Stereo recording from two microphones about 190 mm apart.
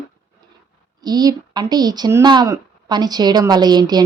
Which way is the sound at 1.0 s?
20° right (ahead or behind).